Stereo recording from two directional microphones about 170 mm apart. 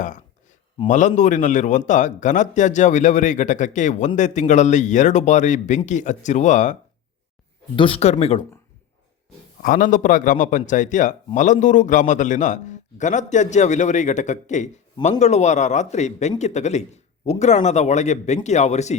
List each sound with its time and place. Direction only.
0.9 s a man's voice: 45° left (ahead or behind)
7.8 s speech: 35° left (ahead or behind)
9.6 s a man's voice: 50° left (ahead or behind)